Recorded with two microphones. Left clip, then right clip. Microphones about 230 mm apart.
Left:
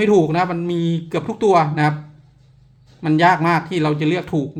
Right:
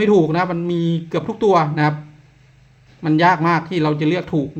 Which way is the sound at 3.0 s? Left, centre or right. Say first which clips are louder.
Even; centre.